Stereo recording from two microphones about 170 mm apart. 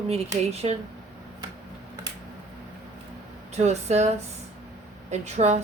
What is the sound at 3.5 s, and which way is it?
A woman's voice, 40° right (ahead or behind).